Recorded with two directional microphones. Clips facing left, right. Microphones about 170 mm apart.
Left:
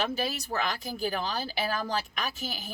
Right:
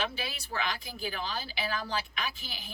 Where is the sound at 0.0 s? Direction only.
45° left (ahead or behind).